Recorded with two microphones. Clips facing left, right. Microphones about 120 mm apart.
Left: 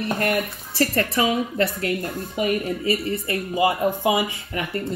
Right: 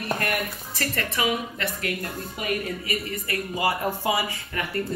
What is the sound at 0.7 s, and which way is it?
A woman's voice, 35° left (ahead or behind).